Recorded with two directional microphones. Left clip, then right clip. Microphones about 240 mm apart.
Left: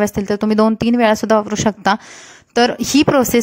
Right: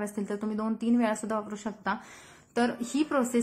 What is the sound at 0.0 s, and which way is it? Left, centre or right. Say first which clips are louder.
A woman's voice: left 16 dB; left.